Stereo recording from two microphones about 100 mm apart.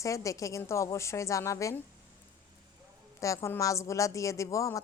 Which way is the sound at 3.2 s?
30° left (ahead or behind).